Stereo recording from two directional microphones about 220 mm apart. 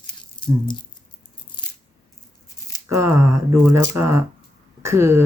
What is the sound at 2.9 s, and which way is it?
Speech, 15° right (ahead or behind).